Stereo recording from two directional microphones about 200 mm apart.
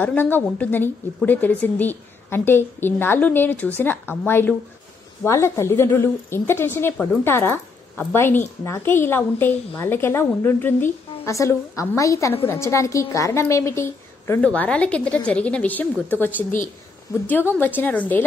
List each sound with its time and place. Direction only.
0.0 s a woman's voice: 10° left (ahead or behind)